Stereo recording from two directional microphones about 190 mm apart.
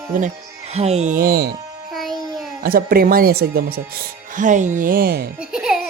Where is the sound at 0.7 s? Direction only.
35° right (ahead or behind); by 1.5 s 55° right (ahead or behind).